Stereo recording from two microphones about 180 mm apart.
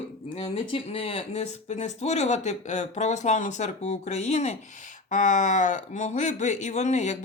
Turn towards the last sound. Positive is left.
turn(degrees=40)  # may be behind; listen again after turning